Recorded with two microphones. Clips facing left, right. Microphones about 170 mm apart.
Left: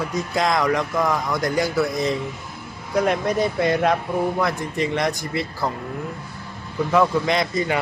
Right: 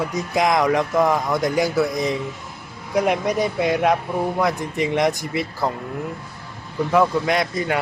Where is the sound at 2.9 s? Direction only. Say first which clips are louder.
Right 1 dB; 15° right (ahead or behind).